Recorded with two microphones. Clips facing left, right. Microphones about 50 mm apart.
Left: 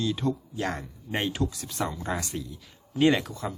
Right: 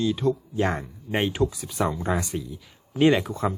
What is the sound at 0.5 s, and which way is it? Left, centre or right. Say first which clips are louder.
A man's voice: right 6 dB; right.